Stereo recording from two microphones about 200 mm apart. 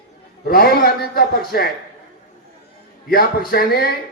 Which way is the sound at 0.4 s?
50° left (ahead or behind).